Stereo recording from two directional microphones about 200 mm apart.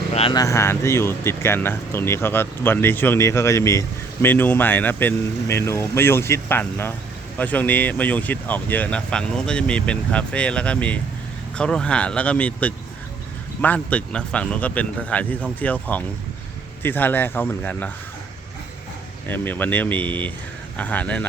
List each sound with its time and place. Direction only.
0.1 s a sound: 30° left (ahead or behind)
0.3 s speech: 15° left (ahead or behind)
19.3 s speech: 10° left (ahead or behind)